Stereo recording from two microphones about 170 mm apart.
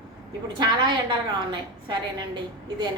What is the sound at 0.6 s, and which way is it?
A woman's voice, 25° right (ahead or behind).